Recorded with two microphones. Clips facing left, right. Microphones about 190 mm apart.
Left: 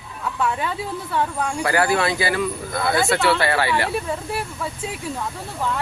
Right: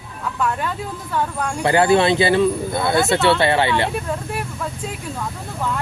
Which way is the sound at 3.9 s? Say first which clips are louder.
Even; 5° left (ahead or behind).